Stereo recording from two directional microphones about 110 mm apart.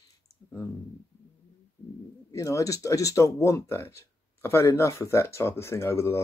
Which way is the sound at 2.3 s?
30° left (ahead or behind).